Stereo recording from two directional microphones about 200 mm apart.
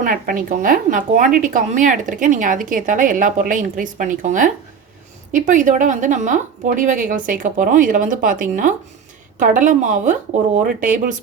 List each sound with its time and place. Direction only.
0.0 s a woman's voice: 45° right (ahead or behind)